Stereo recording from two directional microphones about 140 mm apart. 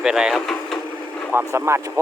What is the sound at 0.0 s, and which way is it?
Speech, 5° right (ahead or behind).